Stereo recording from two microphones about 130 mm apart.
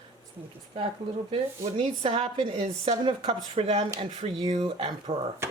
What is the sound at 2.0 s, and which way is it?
Speech, 50° right (ahead or behind).